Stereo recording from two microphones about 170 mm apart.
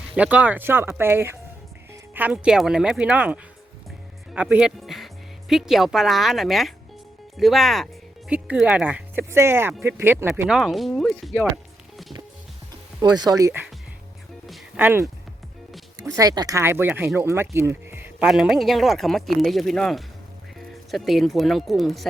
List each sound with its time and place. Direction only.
0.2 s speech: 10° right (ahead or behind)
10.6 s speech: centre (ahead or behind)
13.0 s speech: 25° right (ahead or behind)
14.8 s speech: 10° right (ahead or behind)
16.0 s speech: 20° right (ahead or behind); by 22.0 s centre (ahead or behind)